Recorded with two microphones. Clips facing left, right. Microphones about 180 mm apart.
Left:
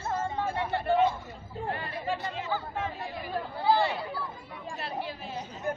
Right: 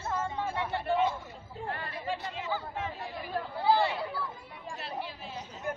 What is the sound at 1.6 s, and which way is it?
Chatter, 20° left (ahead or behind).